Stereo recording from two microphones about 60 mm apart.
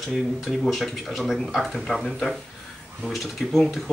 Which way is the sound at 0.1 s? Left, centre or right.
Centre.